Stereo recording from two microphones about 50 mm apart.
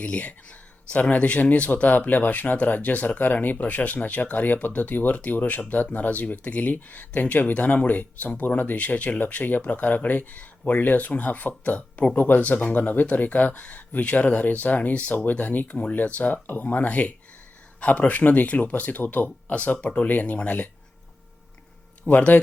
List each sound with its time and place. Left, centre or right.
0.0 s speech: left
22.0 s speech: left